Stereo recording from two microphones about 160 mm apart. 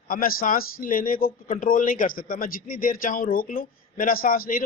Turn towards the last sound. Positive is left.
turn(degrees=60)  # may be behind; listen again after turning